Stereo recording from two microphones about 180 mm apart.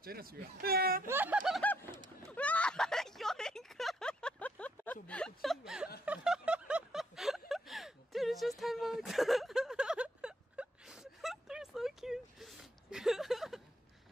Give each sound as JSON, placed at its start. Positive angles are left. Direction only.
{"t": 0.0, "sound": "speech", "side_deg": -55}
{"t": 1.0, "sound": "speech", "side_deg": -10}
{"t": 2.2, "sound": "a sound", "side_deg": 10}